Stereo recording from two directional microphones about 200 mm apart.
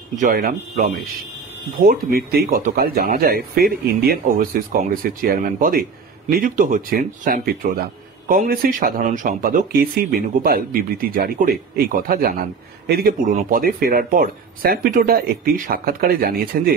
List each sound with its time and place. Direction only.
0.2 s a man's voice: 45° right (ahead or behind)